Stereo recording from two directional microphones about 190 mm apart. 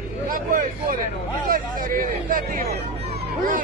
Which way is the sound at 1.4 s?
45° right (ahead or behind).